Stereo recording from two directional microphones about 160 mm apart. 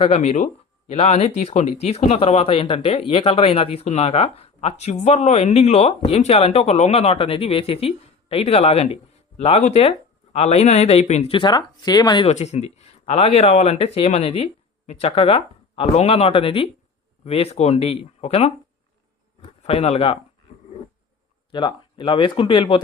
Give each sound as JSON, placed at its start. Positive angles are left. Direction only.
{"t": 0.0, "sound": "speech", "side_deg": 40}
{"t": 12.3, "sound": "speech", "side_deg": 45}
{"t": 21.5, "sound": "speech", "side_deg": 30}